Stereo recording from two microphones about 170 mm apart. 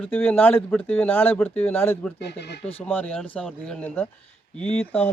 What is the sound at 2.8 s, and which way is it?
A man's voice, 10° left (ahead or behind).